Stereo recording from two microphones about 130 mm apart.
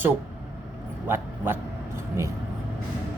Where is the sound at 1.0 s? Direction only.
15° right (ahead or behind).